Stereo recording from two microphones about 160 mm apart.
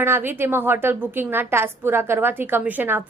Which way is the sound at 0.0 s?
15° right (ahead or behind).